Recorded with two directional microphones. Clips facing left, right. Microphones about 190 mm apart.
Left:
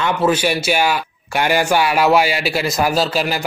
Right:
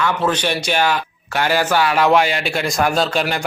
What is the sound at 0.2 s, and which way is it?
A man's voice, 10° left (ahead or behind).